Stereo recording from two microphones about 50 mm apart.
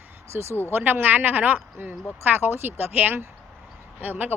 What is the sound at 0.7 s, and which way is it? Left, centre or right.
A woman's voice, right.